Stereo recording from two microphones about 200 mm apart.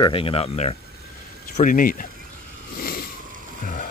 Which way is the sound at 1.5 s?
40° left (ahead or behind).